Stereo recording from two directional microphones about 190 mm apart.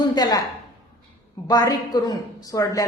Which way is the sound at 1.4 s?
20° left (ahead or behind).